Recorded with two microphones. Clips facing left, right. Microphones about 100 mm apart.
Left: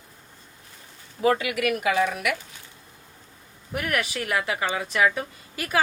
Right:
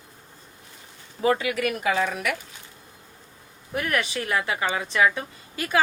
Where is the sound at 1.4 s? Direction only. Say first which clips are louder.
Even; 35° right (ahead or behind).